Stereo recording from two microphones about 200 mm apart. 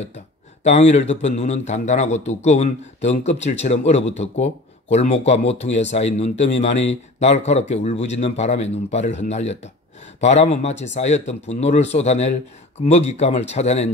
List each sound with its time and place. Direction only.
0.7 s a man's voice: 35° left (ahead or behind)